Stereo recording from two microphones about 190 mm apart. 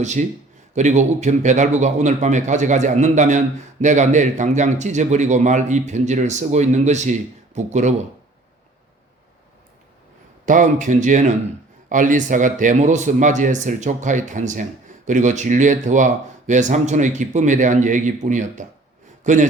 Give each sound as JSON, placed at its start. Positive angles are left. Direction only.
{"t": 0.0, "sound": "a man's voice", "side_deg": -40}
{"t": 10.4, "sound": "a man's voice", "side_deg": -40}